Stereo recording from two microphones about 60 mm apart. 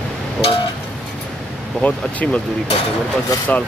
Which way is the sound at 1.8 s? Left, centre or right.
Left.